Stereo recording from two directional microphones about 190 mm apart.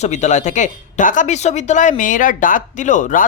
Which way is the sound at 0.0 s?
35° left (ahead or behind).